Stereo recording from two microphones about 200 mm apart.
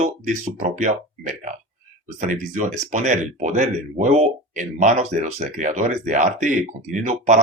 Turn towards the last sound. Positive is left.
turn(degrees=-35)  # may be behind; listen again after turning